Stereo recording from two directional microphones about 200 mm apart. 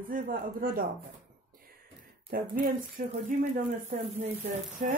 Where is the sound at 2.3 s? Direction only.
45° right (ahead or behind).